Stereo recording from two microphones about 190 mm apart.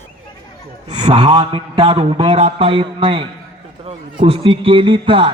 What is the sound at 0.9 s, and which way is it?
A man's voice, 25° right (ahead or behind).